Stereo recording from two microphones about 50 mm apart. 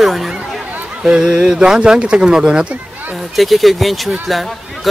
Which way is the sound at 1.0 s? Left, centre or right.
Centre.